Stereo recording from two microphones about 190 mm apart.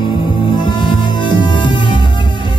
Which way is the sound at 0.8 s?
25° left (ahead or behind).